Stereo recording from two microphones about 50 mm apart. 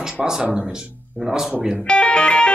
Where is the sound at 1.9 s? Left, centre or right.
Left.